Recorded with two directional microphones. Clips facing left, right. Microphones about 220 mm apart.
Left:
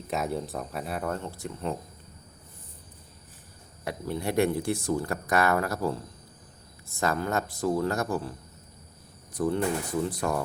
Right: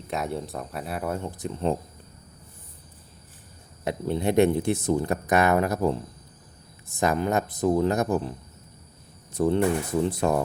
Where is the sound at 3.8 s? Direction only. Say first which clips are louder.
Right 6 dB; 25° right (ahead or behind).